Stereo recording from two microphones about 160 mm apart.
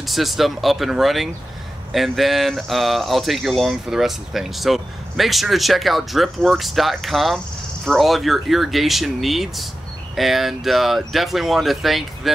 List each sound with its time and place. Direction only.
0.0 s speech: centre (ahead or behind)